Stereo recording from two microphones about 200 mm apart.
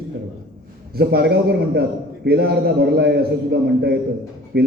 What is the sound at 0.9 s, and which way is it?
A man's voice, 50° right (ahead or behind).